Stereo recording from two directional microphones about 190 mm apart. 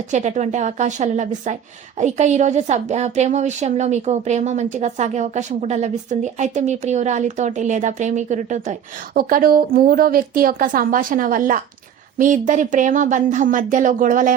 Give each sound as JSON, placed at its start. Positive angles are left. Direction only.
{"t": 0.1, "sound": "a woman's voice", "side_deg": -40}